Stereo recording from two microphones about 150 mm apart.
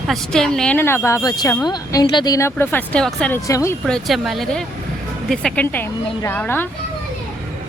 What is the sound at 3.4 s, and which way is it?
Speech, 20° left (ahead or behind).